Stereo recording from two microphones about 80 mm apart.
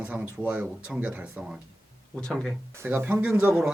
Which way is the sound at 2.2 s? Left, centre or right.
Centre.